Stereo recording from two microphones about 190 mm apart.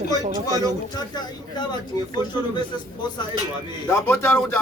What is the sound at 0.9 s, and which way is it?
Speech, 20° left (ahead or behind).